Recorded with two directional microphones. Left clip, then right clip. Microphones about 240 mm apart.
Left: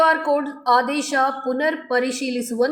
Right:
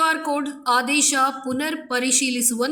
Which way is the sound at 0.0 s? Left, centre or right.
Right.